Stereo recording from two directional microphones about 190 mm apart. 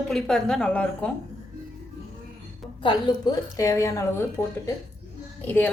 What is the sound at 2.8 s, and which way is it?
A woman's voice, 25° left (ahead or behind).